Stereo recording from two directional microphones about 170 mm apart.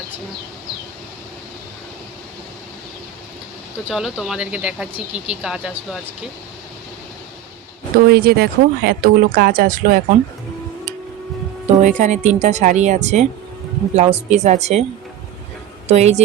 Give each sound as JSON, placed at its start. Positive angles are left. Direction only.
{"t": 3.8, "sound": "speech", "side_deg": -5}
{"t": 7.9, "sound": "speech", "side_deg": -65}
{"t": 11.8, "sound": "a woman's voice", "side_deg": -45}
{"t": 15.9, "sound": "a woman's voice", "side_deg": -40}